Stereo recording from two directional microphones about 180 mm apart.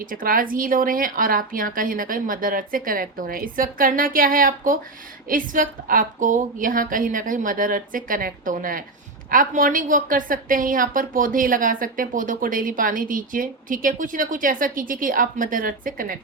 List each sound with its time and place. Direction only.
0.0 s a woman's voice: 50° right (ahead or behind)